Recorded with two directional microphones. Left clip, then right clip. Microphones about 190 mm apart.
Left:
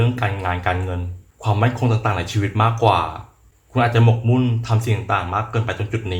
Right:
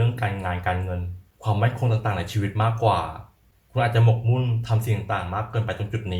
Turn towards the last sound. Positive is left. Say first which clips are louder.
# left 5 dB
turn(degrees=25)  # may be behind; listen again after turning